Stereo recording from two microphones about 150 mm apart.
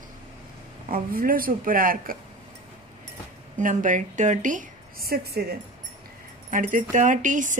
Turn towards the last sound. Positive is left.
turn(degrees=-60)  # may be behind; listen again after turning